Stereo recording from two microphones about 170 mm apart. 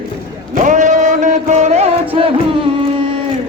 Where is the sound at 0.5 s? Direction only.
50° right (ahead or behind).